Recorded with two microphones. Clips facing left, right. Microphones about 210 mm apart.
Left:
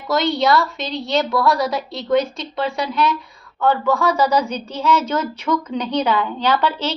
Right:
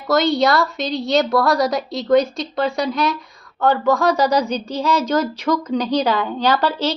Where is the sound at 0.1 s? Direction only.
40° right (ahead or behind).